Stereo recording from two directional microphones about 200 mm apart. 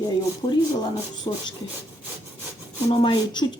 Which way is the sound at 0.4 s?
25° left (ahead or behind).